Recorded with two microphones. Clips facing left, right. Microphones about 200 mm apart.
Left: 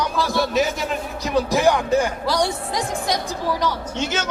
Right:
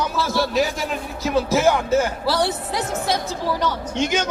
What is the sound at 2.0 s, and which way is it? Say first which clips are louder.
Speech: even; 5° right (ahead or behind).